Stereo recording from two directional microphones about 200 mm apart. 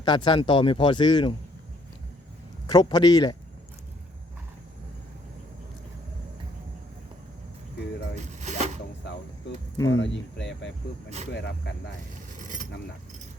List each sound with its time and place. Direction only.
0.0 s speech: 25° left (ahead or behind)
2.6 s speech: 20° left (ahead or behind)
8.1 s zipper: 35° right (ahead or behind)
9.7 s speech: 15° left (ahead or behind)
10.0 s speech: 65° left (ahead or behind)
12.4 s mechanisms: 40° right (ahead or behind)